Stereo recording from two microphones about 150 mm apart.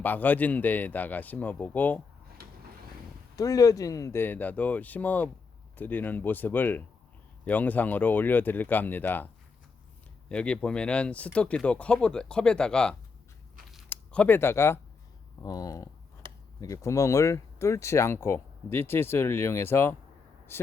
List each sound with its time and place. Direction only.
0.0 s speech: 10° left (ahead or behind)
3.3 s speech: 25° left (ahead or behind)